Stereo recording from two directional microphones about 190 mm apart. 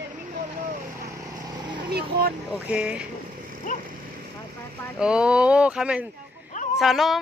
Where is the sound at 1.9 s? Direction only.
55° right (ahead or behind).